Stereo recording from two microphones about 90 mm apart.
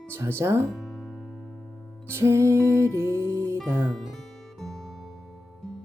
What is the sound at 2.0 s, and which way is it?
Music, 30° right (ahead or behind).